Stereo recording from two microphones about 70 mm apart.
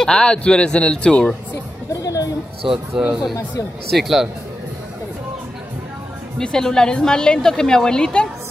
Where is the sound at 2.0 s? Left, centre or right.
Left.